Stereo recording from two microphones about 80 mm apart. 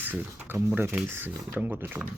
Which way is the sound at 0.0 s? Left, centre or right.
Right.